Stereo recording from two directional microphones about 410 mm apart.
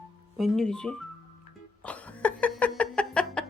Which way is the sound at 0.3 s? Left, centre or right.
Centre.